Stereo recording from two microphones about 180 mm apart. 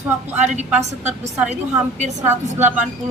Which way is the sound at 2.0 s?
40° right (ahead or behind).